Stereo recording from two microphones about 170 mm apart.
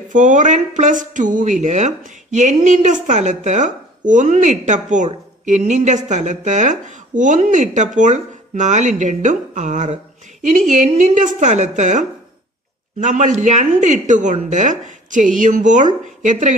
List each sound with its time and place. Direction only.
0.1 s speech: 45° right (ahead or behind)